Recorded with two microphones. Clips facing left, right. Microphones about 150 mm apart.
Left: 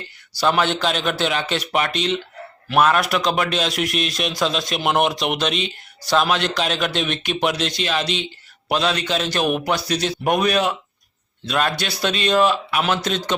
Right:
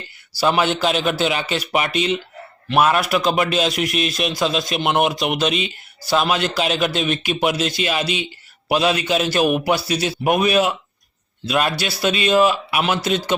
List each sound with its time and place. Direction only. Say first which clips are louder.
0.3 s a man's voice: right 1 dB; 5° right (ahead or behind)